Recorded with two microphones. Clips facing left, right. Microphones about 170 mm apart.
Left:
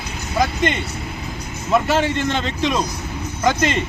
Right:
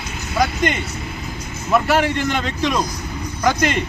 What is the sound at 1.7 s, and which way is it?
Speech, 25° left (ahead or behind).